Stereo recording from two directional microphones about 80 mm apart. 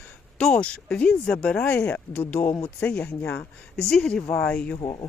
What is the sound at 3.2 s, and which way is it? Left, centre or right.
Speech, left.